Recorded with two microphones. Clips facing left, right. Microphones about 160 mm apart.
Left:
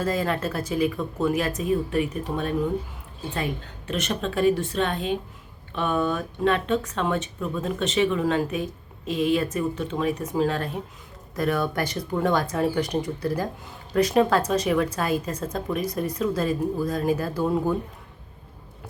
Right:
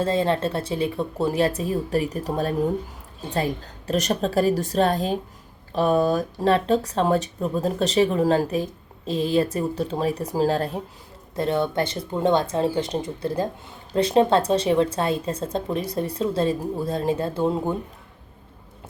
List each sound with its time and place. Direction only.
0.0 s a woman's voice: 30° right (ahead or behind)